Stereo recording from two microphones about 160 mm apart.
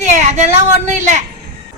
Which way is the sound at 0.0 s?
45° right (ahead or behind).